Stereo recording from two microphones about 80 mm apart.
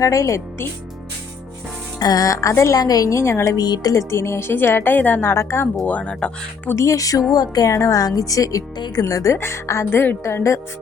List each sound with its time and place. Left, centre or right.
0.0 s a woman's voice: left
2.0 s speech: left
2.7 s a woman's voice: left
5.3 s a woman's voice: left
5.8 s speech: centre
6.7 s a woman's voice: left